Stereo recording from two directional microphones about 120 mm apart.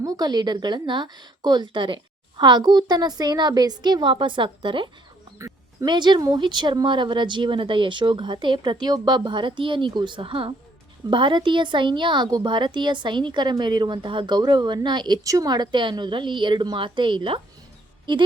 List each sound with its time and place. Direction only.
0.0 s speech: 30° right (ahead or behind)